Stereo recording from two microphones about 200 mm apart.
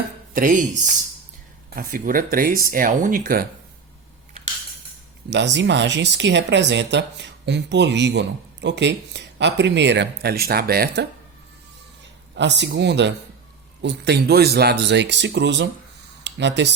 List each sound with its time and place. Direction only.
0.3 s speech: 40° right (ahead or behind)
5.3 s speech: 60° right (ahead or behind)
12.3 s speech: 60° right (ahead or behind)